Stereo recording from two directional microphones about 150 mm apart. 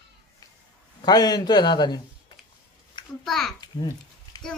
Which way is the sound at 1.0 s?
30° left (ahead or behind).